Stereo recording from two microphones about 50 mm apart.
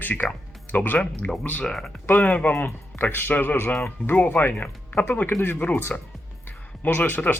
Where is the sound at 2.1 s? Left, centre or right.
Left.